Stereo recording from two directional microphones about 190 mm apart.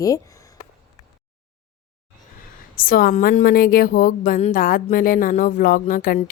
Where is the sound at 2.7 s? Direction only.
50° left (ahead or behind).